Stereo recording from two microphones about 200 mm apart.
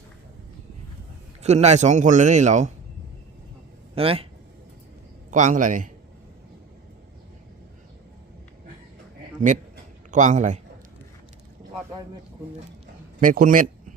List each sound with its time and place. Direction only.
1.4 s a man's voice: 35° right (ahead or behind)
3.9 s speech: 30° right (ahead or behind)
5.3 s a man's voice: 40° right (ahead or behind)
10.1 s a man's voice: 40° right (ahead or behind)
13.1 s speech: 45° right (ahead or behind)